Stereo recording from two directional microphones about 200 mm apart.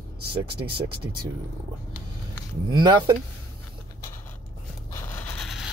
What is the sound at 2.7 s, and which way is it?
Speech, 20° right (ahead or behind).